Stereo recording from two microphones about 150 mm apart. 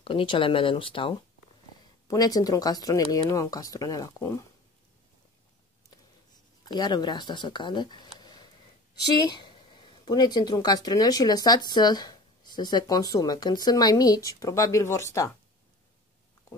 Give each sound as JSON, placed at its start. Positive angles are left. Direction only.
{"t": 0.0, "sound": "speech", "side_deg": 35}
{"t": 2.0, "sound": "speech", "side_deg": 25}
{"t": 6.7, "sound": "speech", "side_deg": 30}
{"t": 8.2, "sound": "a sound", "side_deg": 30}
{"t": 9.3, "sound": "speech", "side_deg": 35}